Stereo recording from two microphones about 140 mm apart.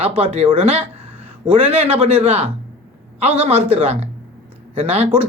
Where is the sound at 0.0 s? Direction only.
45° right (ahead or behind).